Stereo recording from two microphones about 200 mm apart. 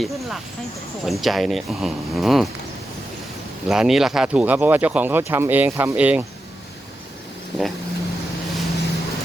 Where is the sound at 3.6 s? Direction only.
Centre (ahead or behind).